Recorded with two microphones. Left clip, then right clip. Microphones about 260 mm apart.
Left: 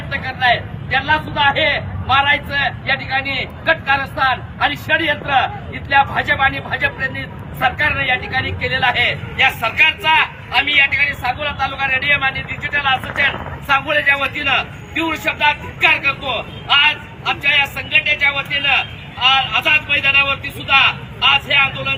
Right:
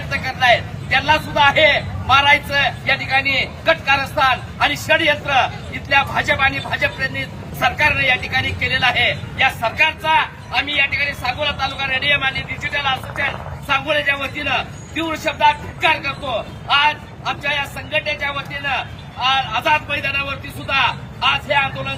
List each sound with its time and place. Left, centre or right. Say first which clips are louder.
0.1 s speech: right 1 dB; centre